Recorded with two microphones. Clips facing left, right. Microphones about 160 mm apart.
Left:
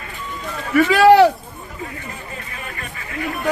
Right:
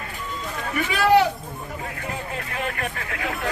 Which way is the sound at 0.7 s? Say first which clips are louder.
Left 7 dB; 90° left.